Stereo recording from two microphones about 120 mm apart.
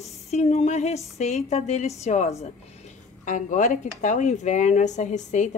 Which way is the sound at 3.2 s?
90° left.